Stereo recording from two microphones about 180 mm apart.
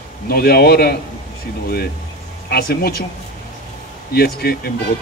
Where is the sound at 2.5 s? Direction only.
60° left (ahead or behind).